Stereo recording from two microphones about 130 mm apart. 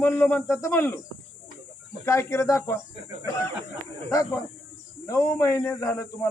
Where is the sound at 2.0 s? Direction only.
20° left (ahead or behind).